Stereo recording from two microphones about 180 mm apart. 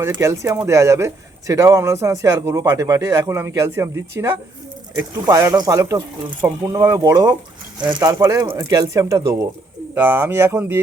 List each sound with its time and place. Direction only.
0.0 s a man's voice: 15° right (ahead or behind)